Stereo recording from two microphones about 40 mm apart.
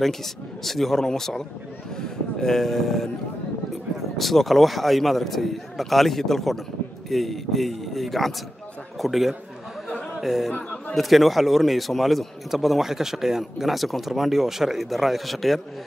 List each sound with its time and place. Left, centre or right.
0.0 s a man's voice: centre
10.5 s a sound: left
11.0 s a man's voice: centre